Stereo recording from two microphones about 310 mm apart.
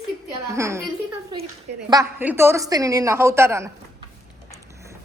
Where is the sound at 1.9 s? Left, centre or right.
Centre.